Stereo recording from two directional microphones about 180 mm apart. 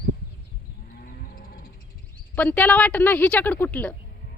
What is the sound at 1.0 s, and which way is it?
Moo, 50° left (ahead or behind).